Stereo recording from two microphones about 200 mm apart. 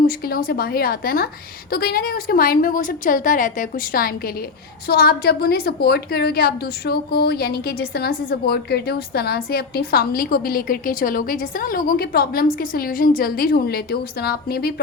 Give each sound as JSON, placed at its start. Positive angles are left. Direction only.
{"t": 0.0, "sound": "a woman's voice", "side_deg": 45}